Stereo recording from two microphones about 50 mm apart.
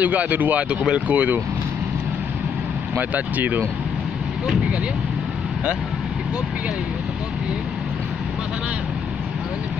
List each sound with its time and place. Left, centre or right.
0.0 s speech: right
3.0 s speech: right